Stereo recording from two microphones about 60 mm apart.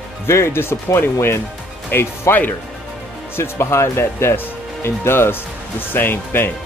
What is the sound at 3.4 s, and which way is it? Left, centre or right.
Speech, left.